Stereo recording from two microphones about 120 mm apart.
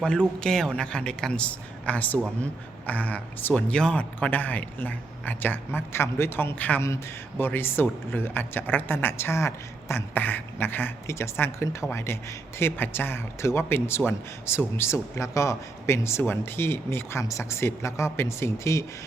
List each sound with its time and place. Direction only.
0.0 s a man's voice: 5° left (ahead or behind); by 18.9 s 25° left (ahead or behind)